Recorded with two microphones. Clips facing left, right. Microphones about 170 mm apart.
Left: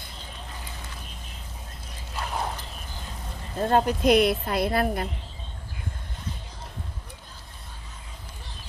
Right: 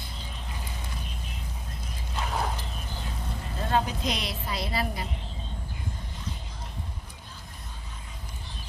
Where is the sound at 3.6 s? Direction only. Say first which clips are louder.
Left 7 dB; 50° left (ahead or behind).